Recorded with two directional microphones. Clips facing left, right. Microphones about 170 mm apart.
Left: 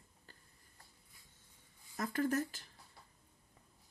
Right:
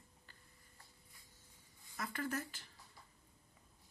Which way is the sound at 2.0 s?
40° left (ahead or behind).